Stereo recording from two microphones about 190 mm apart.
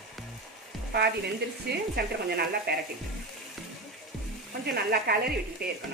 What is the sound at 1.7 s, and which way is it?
Speech, 55° right (ahead or behind).